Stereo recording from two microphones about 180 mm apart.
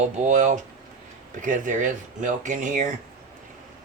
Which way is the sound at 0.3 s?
45° right (ahead or behind).